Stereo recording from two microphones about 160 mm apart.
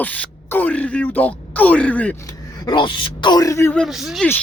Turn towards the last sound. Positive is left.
turn(degrees=-5)  # may be behind; listen again after turning